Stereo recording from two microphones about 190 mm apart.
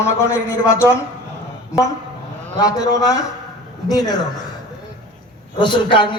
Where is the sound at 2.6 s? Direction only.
20° left (ahead or behind).